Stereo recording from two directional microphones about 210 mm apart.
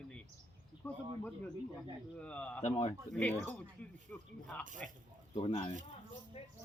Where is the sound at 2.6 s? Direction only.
30° left (ahead or behind).